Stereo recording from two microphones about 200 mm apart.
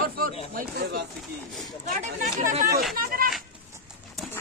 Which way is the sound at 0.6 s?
55° right (ahead or behind).